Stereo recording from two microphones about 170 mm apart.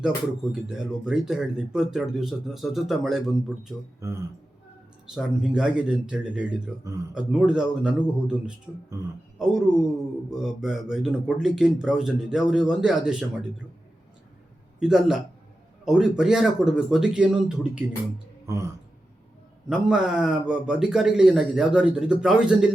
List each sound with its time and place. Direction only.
0.5 s speech: 5° right (ahead or behind)
4.0 s speech: 20° right (ahead or behind)
5.1 s speech: 5° right (ahead or behind)
14.8 s speech: 5° right (ahead or behind)
18.4 s a sound: 15° right (ahead or behind)
19.6 s speech: 5° right (ahead or behind)